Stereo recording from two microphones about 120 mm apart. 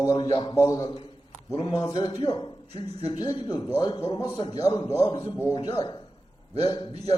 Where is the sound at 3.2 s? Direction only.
35° left (ahead or behind).